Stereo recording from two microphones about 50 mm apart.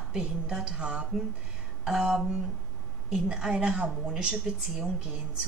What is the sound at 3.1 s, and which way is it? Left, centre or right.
Speech, centre.